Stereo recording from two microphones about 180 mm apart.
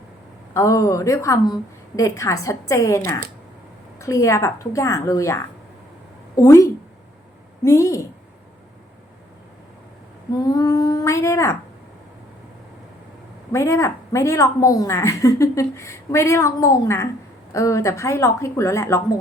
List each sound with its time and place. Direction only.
0.5 s a woman's voice: 15° left (ahead or behind)
10.3 s a sound: 20° left (ahead or behind)
13.5 s a woman's voice: 15° left (ahead or behind)